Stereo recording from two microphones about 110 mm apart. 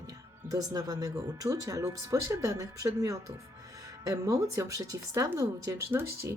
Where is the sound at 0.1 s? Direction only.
35° right (ahead or behind).